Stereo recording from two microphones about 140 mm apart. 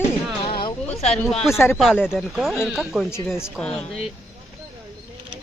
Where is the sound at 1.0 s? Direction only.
50° left (ahead or behind).